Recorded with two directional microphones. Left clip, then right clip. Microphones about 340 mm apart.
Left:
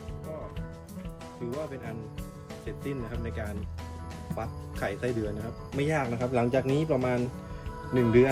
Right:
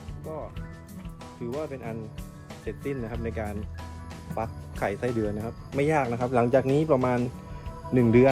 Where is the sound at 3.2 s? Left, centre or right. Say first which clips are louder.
Right 4 dB; right.